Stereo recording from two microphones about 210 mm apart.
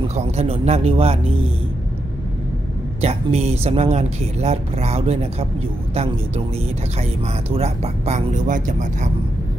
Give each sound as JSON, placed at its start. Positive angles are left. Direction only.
{"t": 0.1, "sound": "speech", "side_deg": -30}
{"t": 3.0, "sound": "speech", "side_deg": -30}
{"t": 7.0, "sound": "speech", "side_deg": -30}